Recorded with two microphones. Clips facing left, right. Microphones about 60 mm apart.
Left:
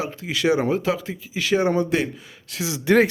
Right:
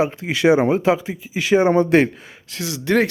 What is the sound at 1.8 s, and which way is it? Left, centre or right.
Speech, right.